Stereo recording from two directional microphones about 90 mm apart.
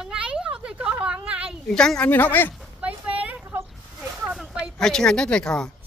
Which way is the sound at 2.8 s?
15° right (ahead or behind).